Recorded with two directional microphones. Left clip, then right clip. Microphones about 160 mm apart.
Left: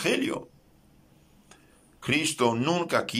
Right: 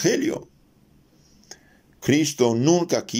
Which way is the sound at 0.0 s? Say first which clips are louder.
Right 5 dB; 45° right (ahead or behind).